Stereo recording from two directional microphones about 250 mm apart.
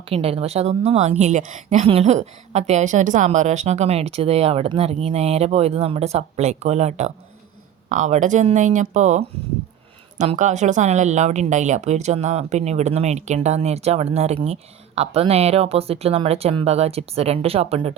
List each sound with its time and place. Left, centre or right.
0.1 s speech: right